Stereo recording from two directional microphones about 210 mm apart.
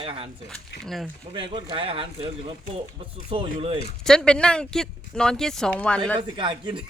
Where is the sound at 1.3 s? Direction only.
25° right (ahead or behind).